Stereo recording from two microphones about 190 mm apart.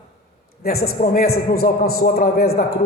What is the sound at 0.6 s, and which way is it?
A man's voice, 50° left (ahead or behind).